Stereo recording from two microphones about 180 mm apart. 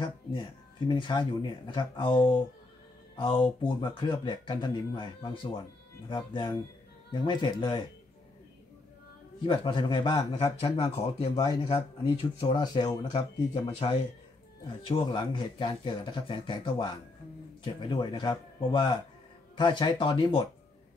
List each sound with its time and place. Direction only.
0.0 s a man's voice: 25° left (ahead or behind)
9.5 s a man's voice: 25° left (ahead or behind)